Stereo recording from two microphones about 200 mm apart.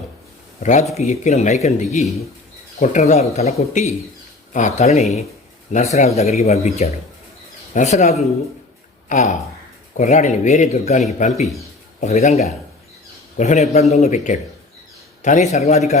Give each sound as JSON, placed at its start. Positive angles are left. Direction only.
{"t": 0.6, "sound": "a man's voice", "side_deg": 35}